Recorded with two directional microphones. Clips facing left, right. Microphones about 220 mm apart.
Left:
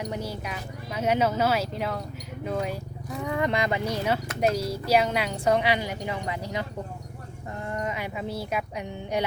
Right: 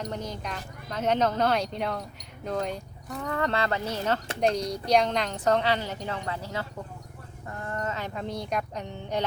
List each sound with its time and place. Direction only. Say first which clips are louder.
0.0 s speech: left 2 dB; 10° left (ahead or behind)